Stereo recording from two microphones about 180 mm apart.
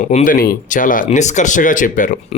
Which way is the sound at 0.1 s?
45° left (ahead or behind).